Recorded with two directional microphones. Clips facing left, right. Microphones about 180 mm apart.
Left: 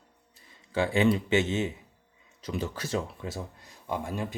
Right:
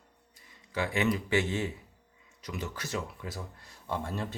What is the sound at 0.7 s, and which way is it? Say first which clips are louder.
Speech: left 5 dB; 30° left (ahead or behind).